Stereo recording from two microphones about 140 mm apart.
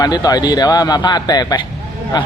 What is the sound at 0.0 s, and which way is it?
A man's voice, 25° left (ahead or behind).